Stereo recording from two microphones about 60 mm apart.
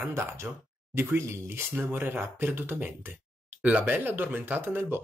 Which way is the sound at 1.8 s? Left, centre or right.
Right.